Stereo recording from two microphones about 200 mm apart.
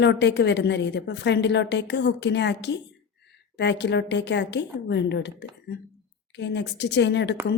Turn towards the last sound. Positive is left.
turn(degrees=60)  # may be behind; listen again after turning